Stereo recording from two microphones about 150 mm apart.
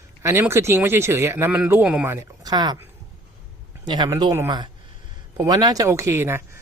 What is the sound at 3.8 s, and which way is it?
Speech, 30° right (ahead or behind).